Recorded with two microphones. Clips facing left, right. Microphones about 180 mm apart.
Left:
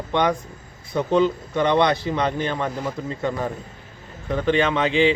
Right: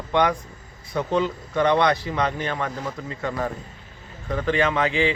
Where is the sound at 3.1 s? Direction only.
25° left (ahead or behind).